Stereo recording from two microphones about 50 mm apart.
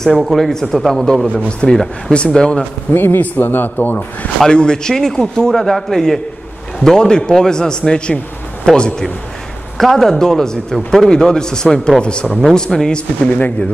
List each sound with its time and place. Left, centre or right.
0.1 s speech: centre
1.3 s a man's voice: left
2.9 s a man's voice: left
4.5 s a man's voice: centre
9.8 s a man's voice: centre